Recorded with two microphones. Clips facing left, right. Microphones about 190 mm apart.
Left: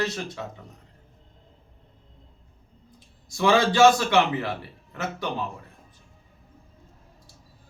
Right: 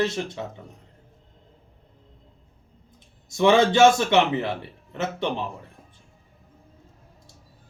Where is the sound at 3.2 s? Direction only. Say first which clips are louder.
Right 3 dB; 20° right (ahead or behind).